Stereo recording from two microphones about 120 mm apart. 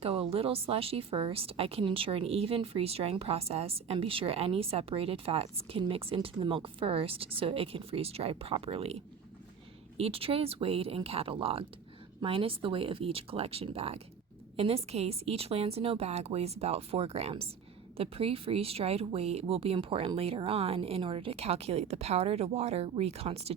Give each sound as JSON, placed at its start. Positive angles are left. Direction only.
{"t": 0.0, "sound": "a woman's voice", "side_deg": -55}
{"t": 10.0, "sound": "a woman's voice", "side_deg": -50}